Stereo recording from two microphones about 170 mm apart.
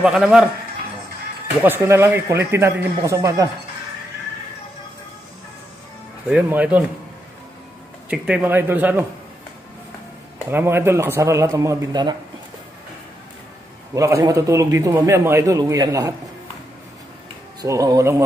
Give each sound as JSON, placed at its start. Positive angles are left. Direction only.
{"t": 0.0, "sound": "a man's voice", "side_deg": -5}
{"t": 1.6, "sound": "a man's voice", "side_deg": -10}
{"t": 6.2, "sound": "a man's voice", "side_deg": -10}
{"t": 8.1, "sound": "a man's voice", "side_deg": -5}
{"t": 10.5, "sound": "a man's voice", "side_deg": -15}
{"t": 13.9, "sound": "a man's voice", "side_deg": -20}
{"t": 17.6, "sound": "a man's voice", "side_deg": -20}